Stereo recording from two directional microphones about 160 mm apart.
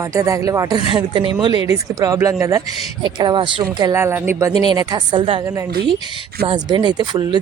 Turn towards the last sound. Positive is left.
turn(degrees=-30)  # may be behind; listen again after turning